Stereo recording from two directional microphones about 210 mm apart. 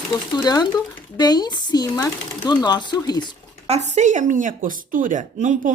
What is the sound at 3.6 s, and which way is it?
A woman's voice, 30° right (ahead or behind).